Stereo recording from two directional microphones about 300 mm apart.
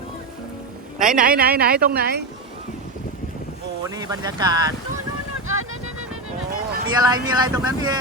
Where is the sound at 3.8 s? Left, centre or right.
Centre.